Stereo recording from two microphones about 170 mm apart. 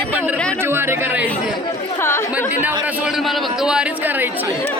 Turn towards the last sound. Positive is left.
turn(degrees=-10)  # may be behind; listen again after turning